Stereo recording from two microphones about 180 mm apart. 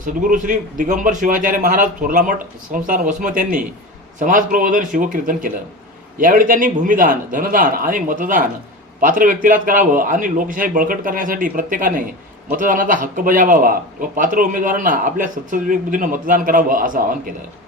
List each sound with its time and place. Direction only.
0.0 s a man's voice: 50° right (ahead or behind)